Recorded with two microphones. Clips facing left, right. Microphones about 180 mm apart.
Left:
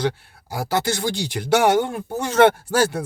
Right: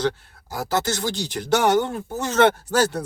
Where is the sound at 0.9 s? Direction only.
60° left (ahead or behind).